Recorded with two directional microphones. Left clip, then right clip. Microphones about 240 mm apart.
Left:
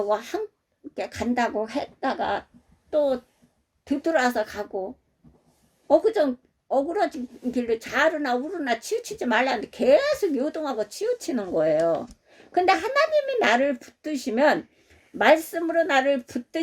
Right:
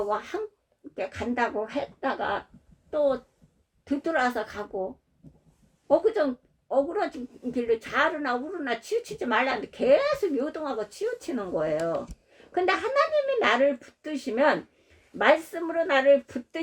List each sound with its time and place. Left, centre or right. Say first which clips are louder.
0.1 s a woman's voice: left 4 dB; left
3.8 s a woman's voice: left 3 dB; left
5.9 s a woman's voice: left 3 dB; left